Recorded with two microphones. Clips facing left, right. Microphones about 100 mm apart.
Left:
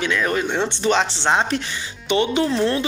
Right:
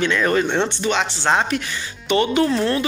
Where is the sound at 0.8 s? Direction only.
35° left (ahead or behind).